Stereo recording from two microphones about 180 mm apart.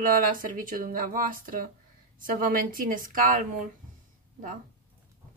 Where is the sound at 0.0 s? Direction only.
50° right (ahead or behind).